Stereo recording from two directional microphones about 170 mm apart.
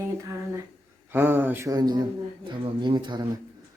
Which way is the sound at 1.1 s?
10° right (ahead or behind).